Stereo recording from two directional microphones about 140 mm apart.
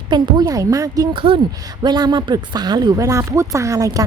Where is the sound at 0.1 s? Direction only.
30° right (ahead or behind).